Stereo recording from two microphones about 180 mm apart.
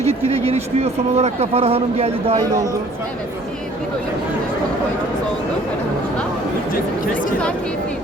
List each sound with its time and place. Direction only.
0.0 s speech: 35° right (ahead or behind)